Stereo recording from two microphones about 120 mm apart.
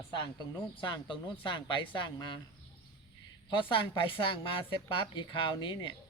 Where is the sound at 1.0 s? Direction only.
40° left (ahead or behind).